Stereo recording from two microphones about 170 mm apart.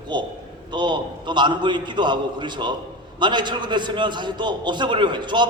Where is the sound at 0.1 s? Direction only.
25° right (ahead or behind).